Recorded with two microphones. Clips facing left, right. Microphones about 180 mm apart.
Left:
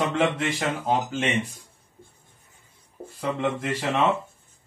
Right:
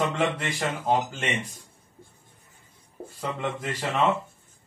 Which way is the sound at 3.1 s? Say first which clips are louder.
Left 4 dB; centre (ahead or behind).